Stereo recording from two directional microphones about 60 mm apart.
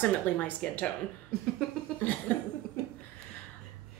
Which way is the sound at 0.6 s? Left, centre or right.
Centre.